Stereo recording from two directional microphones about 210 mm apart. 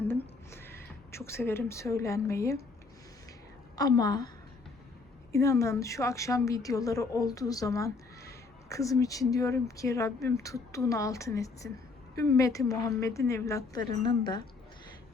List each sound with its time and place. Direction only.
0.0 s a sound: 10° left (ahead or behind)
3.8 s a woman's voice: 20° left (ahead or behind)
5.3 s a woman's voice: 15° left (ahead or behind)